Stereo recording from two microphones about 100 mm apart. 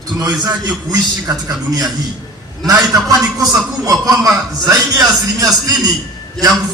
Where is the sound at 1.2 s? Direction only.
35° right (ahead or behind).